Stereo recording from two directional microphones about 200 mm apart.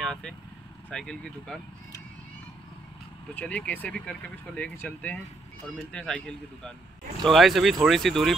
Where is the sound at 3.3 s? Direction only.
5° left (ahead or behind).